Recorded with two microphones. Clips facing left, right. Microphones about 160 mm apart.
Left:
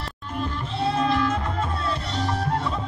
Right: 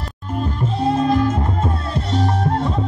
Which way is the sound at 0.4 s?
45° right (ahead or behind).